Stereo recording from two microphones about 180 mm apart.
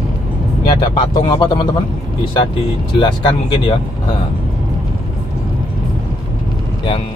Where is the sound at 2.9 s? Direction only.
25° left (ahead or behind).